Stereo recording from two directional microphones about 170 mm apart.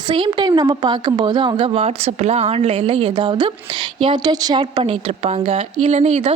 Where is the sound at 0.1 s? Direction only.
30° right (ahead or behind).